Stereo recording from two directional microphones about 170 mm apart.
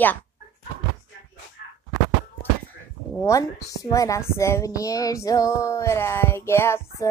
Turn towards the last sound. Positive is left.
turn(degrees=15)  # may be behind; listen again after turning